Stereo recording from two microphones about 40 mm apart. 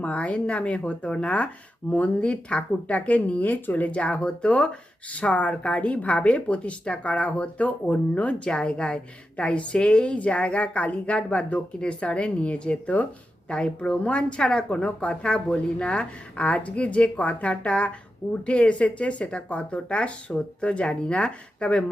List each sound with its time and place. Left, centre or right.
0.0 s a woman's voice: left
13.5 s a woman's voice: left